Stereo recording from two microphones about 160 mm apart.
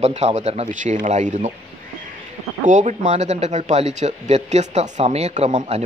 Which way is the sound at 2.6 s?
50° right (ahead or behind).